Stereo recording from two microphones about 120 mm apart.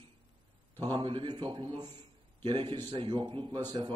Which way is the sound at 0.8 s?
45° right (ahead or behind).